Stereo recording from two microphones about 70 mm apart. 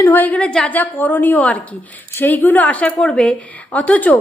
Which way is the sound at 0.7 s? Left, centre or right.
Left.